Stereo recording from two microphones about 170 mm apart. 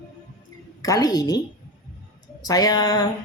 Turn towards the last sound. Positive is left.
turn(degrees=25)  # may be behind; listen again after turning